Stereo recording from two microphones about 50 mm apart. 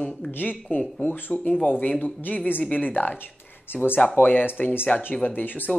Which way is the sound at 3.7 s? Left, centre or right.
Left.